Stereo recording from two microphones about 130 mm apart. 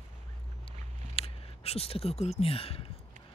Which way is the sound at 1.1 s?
50° left (ahead or behind).